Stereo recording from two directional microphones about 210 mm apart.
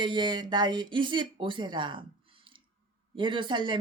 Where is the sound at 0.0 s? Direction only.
20° right (ahead or behind).